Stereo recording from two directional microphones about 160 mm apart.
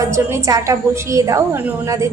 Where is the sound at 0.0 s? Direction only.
20° right (ahead or behind).